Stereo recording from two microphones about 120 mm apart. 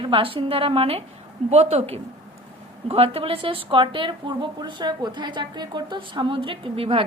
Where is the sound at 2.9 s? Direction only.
55° right (ahead or behind).